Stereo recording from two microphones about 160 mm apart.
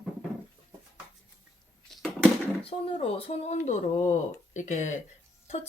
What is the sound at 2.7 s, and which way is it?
Speech, 40° left (ahead or behind).